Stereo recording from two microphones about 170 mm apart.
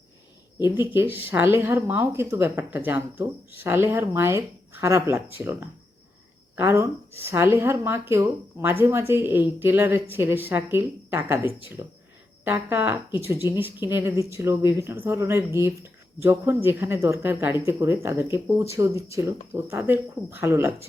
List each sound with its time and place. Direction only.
0.9 s a woman's voice: 10° right (ahead or behind)